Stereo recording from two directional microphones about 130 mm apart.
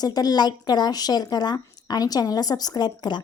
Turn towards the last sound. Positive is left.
turn(degrees=35)  # may be behind; listen again after turning